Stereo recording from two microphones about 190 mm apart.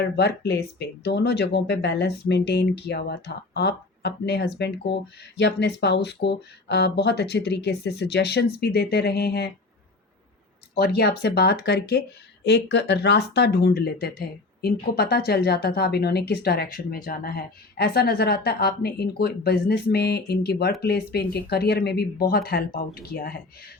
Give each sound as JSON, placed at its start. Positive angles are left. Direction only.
{"t": 0.0, "sound": "speech", "side_deg": 60}
{"t": 10.8, "sound": "speech", "side_deg": 55}